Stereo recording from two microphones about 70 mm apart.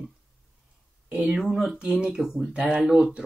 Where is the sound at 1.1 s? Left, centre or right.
Centre.